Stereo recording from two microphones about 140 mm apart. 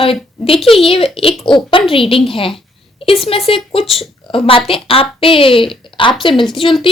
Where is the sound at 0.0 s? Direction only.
40° left (ahead or behind).